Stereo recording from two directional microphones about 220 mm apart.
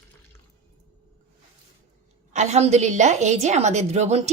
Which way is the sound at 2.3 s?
30° right (ahead or behind).